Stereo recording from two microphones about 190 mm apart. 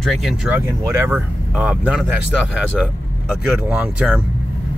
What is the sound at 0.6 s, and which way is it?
Speech, 15° right (ahead or behind).